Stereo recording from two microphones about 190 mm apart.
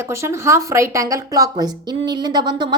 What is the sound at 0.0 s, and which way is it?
A woman's voice, 15° right (ahead or behind).